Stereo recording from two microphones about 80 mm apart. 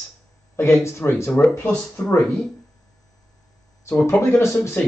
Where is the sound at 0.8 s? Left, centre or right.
Left.